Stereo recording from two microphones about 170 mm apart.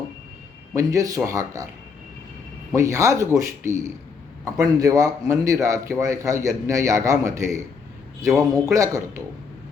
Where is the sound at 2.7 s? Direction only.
20° right (ahead or behind).